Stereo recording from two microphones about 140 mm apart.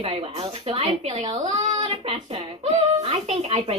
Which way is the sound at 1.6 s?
50° right (ahead or behind).